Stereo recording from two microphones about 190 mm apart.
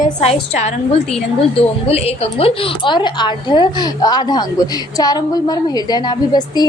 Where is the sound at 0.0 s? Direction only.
35° left (ahead or behind).